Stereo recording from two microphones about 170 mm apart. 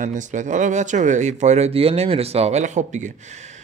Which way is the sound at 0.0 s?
45° right (ahead or behind).